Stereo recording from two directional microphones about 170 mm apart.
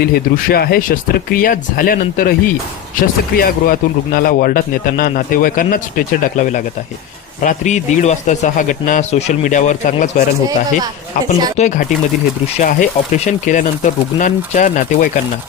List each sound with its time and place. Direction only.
0.0 s a man's voice: 65° left (ahead or behind)
3.3 s a man's voice: 60° left (ahead or behind)
11.5 s speech: 45° left (ahead or behind)